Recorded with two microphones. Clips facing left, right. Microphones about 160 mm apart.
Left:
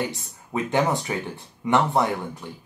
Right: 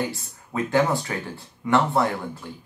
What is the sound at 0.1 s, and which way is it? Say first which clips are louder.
Speech: left 2 dB; 20° left (ahead or behind).